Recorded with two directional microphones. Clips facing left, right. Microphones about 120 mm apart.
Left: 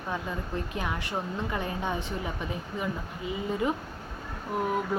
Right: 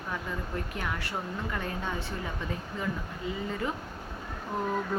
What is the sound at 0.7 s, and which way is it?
A woman's voice, 20° left (ahead or behind).